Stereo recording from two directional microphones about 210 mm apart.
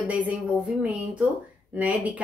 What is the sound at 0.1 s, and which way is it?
Speech, 5° right (ahead or behind).